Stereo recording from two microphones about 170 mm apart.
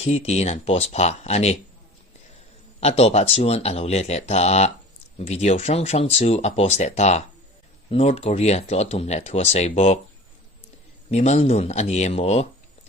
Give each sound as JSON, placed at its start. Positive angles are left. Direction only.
{"t": 0.0, "sound": "speech", "side_deg": 40}
{"t": 2.8, "sound": "speech", "side_deg": 35}
{"t": 11.1, "sound": "speech", "side_deg": 40}